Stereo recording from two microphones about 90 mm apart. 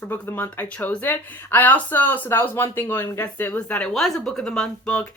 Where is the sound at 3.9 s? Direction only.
5° left (ahead or behind).